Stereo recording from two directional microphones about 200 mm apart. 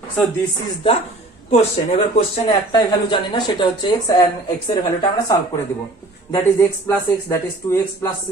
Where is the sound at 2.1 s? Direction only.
25° left (ahead or behind).